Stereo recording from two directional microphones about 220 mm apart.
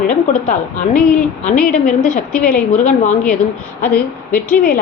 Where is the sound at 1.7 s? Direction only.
35° left (ahead or behind).